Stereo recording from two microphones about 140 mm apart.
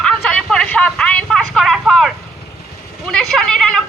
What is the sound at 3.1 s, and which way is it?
Speech, 5° left (ahead or behind).